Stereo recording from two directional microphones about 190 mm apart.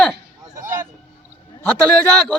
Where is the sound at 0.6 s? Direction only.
10° right (ahead or behind).